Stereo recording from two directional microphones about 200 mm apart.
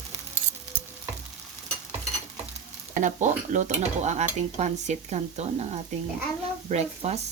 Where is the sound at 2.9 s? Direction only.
40° right (ahead or behind).